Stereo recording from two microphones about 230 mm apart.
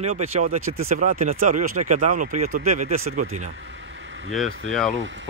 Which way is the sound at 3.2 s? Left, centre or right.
Right.